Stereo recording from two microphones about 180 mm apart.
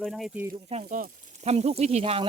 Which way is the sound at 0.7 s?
40° right (ahead or behind).